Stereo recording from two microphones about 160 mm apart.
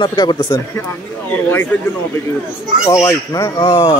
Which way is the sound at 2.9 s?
20° left (ahead or behind).